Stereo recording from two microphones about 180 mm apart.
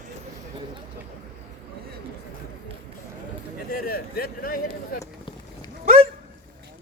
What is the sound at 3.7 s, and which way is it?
Speech, 55° left (ahead or behind).